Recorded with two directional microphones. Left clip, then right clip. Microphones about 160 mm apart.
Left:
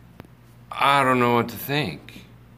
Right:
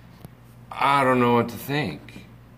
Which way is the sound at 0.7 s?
15° left (ahead or behind).